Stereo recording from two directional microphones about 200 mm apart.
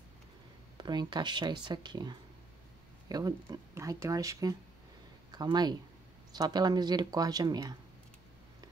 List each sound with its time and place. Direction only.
0.7 s speech: 20° right (ahead or behind)